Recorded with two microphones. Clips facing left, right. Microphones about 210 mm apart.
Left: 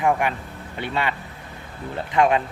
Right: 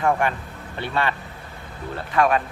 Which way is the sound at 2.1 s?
20° left (ahead or behind).